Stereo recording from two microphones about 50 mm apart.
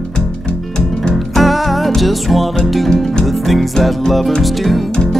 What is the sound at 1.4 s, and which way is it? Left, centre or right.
Music, centre.